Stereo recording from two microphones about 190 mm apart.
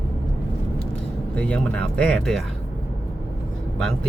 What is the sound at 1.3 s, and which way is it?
Speech, 5° left (ahead or behind).